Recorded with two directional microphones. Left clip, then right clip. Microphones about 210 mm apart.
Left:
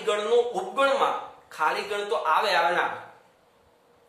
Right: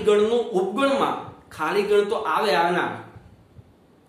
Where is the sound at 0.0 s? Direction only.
5° right (ahead or behind).